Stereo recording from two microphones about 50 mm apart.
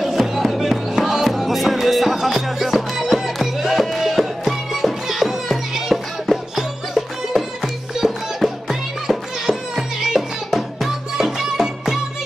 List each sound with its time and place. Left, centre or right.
0.0 s music: centre